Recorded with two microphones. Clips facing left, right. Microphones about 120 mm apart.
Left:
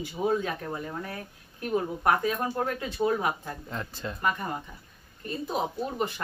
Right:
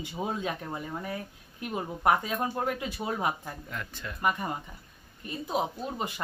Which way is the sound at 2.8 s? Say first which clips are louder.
Left 7 dB; 10° right (ahead or behind).